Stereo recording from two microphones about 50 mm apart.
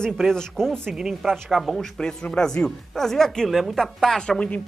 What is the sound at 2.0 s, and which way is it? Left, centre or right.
Speech, centre.